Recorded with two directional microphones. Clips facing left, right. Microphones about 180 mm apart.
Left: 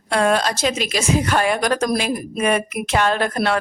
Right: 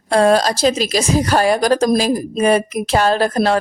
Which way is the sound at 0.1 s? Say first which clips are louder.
Right 5 dB; 35° right (ahead or behind).